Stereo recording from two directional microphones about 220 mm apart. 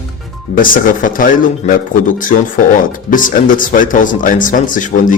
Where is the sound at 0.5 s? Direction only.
40° left (ahead or behind).